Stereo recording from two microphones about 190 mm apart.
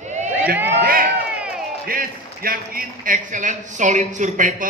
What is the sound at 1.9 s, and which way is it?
A man's voice, 50° right (ahead or behind).